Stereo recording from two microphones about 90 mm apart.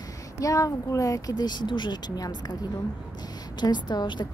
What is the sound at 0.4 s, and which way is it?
Speech, 40° left (ahead or behind).